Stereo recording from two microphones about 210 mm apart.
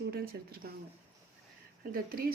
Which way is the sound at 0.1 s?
45° right (ahead or behind).